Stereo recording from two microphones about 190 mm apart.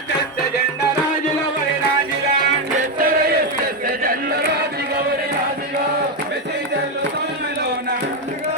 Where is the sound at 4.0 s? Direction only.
50° right (ahead or behind).